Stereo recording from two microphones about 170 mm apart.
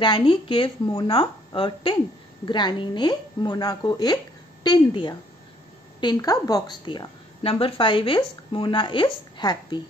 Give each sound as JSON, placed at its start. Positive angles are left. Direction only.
{"t": 0.0, "sound": "a woman's voice", "side_deg": 30}